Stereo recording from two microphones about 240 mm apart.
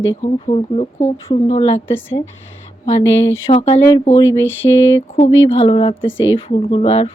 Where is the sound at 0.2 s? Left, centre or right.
Left.